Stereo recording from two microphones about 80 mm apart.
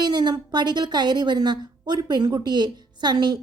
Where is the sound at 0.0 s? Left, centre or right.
Right.